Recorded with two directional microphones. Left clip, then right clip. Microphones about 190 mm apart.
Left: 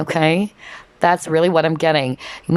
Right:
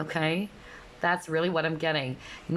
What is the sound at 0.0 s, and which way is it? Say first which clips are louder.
Speech: left 12 dB; 30° left (ahead or behind).